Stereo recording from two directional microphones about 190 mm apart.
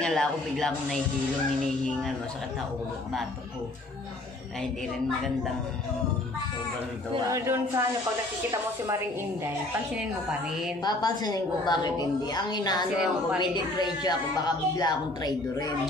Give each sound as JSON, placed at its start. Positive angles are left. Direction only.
{"t": 0.0, "sound": "speech", "side_deg": 5}
{"t": 7.2, "sound": "speech", "side_deg": -15}
{"t": 10.8, "sound": "a woman's voice", "side_deg": 20}
{"t": 12.9, "sound": "speech", "side_deg": -5}
{"t": 13.4, "sound": "a woman's voice", "side_deg": 20}